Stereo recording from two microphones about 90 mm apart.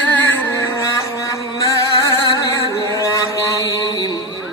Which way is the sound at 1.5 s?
40° left (ahead or behind).